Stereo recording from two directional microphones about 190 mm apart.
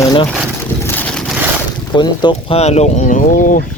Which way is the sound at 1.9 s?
25° left (ahead or behind).